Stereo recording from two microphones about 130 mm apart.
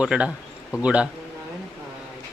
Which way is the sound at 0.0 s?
10° right (ahead or behind).